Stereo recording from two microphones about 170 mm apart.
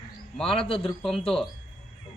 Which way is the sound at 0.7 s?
35° left (ahead or behind).